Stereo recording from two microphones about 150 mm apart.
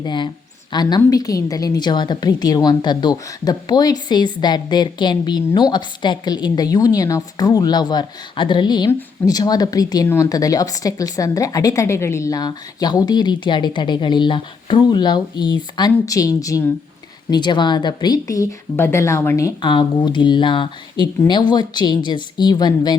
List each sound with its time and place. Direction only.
0.0 s a woman's voice: 30° left (ahead or behind)
19.6 s a woman's voice: 30° left (ahead or behind)